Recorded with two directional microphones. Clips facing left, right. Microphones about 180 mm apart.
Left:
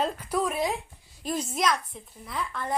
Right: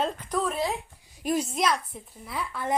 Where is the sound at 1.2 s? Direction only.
10° right (ahead or behind).